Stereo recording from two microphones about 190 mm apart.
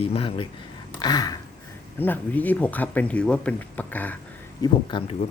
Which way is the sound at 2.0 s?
10° left (ahead or behind).